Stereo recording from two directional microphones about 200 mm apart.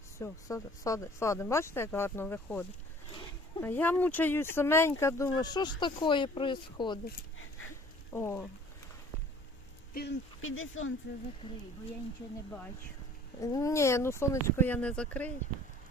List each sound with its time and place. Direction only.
0.2 s speech: 15° left (ahead or behind)
8.1 s speech: 10° left (ahead or behind)
9.9 s speech: 50° left (ahead or behind)
10.4 s speech: 80° left
13.4 s speech: 15° left (ahead or behind)